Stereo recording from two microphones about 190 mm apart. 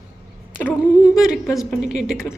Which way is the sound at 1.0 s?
5° right (ahead or behind).